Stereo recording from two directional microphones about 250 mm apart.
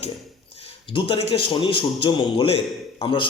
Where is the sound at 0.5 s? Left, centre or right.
Left.